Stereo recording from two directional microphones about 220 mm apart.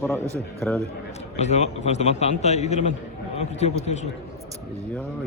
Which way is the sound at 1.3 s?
30° left (ahead or behind).